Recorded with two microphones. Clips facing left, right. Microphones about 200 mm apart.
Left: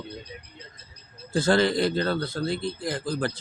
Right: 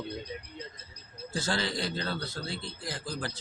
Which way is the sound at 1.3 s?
55° left (ahead or behind).